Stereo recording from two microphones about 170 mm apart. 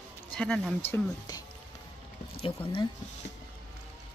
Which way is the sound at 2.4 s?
30° left (ahead or behind).